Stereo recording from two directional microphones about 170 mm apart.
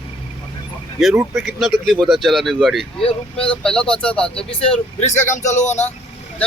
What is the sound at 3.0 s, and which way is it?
Speech, 35° left (ahead or behind).